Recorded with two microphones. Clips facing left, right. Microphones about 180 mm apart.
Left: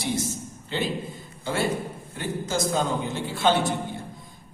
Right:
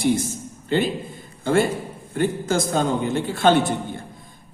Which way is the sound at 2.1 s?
55° right (ahead or behind).